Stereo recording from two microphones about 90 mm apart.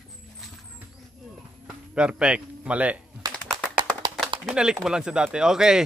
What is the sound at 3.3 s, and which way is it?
Clapping, 10° left (ahead or behind).